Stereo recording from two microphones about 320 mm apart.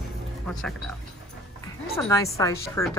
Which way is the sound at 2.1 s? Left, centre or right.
Centre.